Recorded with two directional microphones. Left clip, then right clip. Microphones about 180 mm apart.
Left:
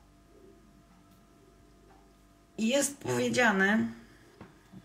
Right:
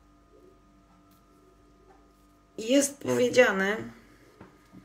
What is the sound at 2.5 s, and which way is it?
A woman's voice, 45° right (ahead or behind).